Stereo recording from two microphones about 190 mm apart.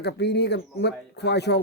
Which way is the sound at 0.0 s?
60° left (ahead or behind).